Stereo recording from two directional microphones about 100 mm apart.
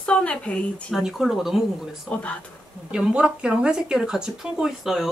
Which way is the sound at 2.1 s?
10° left (ahead or behind).